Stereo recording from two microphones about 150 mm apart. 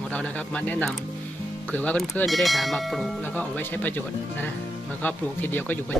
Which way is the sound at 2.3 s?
Centre (ahead or behind).